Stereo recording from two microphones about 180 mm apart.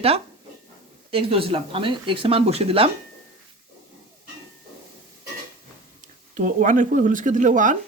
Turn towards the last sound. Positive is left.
turn(degrees=-45)  # may be behind; listen again after turning